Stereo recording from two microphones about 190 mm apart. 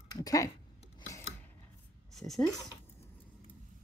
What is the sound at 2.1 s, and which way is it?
Speech, centre (ahead or behind).